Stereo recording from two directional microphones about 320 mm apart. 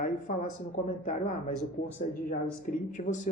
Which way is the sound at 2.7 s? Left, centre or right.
Left.